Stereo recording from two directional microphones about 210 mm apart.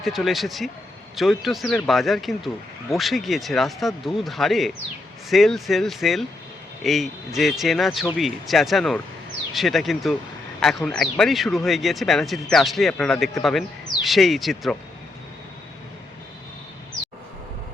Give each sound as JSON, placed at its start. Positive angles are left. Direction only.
{"t": 0.0, "sound": "speech", "side_deg": 0}